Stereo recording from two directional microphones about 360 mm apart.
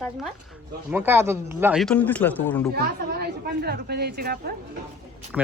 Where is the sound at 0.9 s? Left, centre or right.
Centre.